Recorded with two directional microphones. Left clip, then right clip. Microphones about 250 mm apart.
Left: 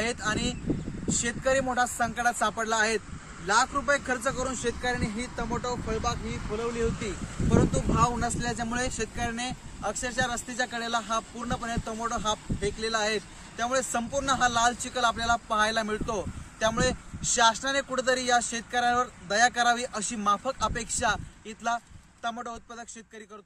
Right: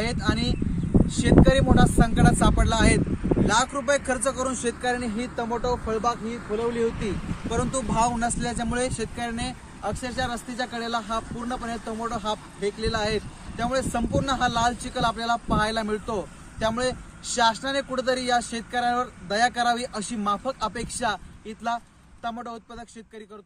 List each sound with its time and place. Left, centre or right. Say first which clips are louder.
0.0 s speech: right 2 dB; centre; by 3.0 s right
3.4 s speech: even; right
7.4 s speech: left 1 dB; right
8.3 s speech: right 2 dB; centre